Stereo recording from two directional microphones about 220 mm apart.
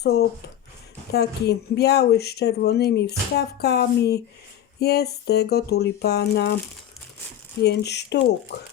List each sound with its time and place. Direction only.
0.0 s speech: 45° left (ahead or behind)
7.6 s speech: 50° left (ahead or behind)